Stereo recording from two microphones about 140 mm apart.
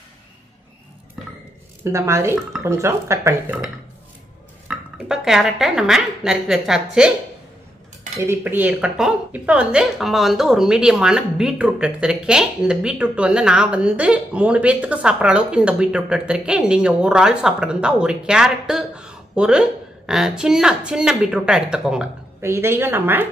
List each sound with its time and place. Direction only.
1.9 s speech: 20° right (ahead or behind)
4.6 s speech: 5° right (ahead or behind)
8.2 s a woman's voice: 15° right (ahead or behind)
22.4 s a woman's voice: 20° right (ahead or behind)